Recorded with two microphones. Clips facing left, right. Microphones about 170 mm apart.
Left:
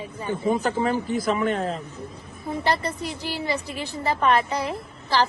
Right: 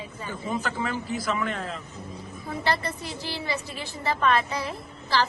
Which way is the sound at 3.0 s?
15° left (ahead or behind).